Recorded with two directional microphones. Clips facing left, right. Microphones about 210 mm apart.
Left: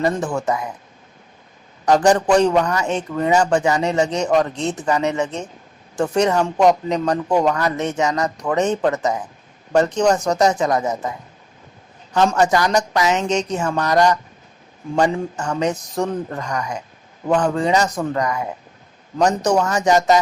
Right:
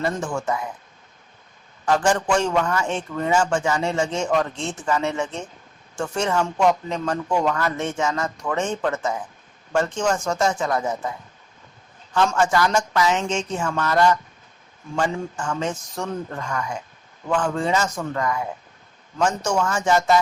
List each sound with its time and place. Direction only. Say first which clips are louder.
0.0 s a man's voice: left 5 dB; 35° left (ahead or behind)
1.8 s a man's voice: left 5 dB; 40° left (ahead or behind)
12.1 s a man's voice: left 4 dB; 35° left (ahead or behind)